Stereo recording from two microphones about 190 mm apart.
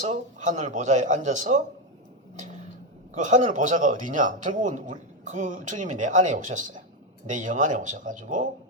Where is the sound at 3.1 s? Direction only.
40° right (ahead or behind).